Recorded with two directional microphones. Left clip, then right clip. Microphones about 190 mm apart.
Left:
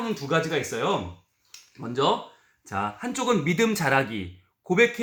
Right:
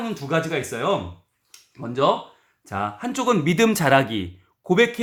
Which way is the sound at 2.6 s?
50° right (ahead or behind).